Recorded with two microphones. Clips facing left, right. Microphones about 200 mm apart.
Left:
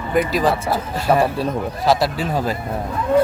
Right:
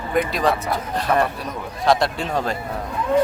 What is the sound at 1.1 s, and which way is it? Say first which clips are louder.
Speech: left 3 dB; 30° left (ahead or behind).